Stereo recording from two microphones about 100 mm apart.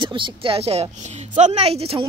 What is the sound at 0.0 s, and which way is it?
Speech, 55° right (ahead or behind).